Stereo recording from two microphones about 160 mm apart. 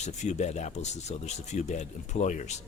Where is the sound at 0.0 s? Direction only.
45° left (ahead or behind).